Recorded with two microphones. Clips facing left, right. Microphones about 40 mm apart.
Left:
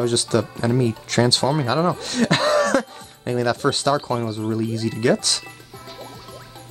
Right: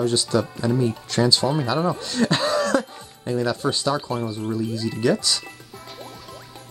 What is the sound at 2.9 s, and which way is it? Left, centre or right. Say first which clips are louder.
Music: left 1 dB; left.